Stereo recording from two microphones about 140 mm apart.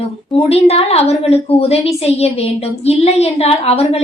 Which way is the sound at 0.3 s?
45° left (ahead or behind).